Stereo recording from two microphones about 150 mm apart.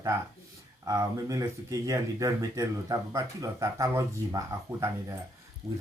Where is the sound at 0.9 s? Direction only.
25° right (ahead or behind).